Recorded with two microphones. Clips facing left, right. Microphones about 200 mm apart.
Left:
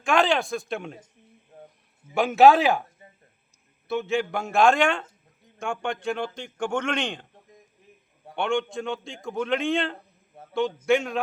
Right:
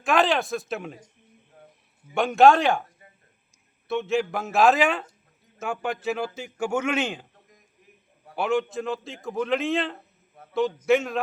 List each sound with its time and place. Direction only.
0.0 s a man's voice: centre (ahead or behind)
1.5 s a sound: 25° left (ahead or behind)
2.1 s a man's voice: centre (ahead or behind)
3.8 s a man's voice: centre (ahead or behind)
8.4 s a man's voice: 5° right (ahead or behind)
10.3 s a sound: 30° left (ahead or behind)
10.8 s a man's voice: centre (ahead or behind)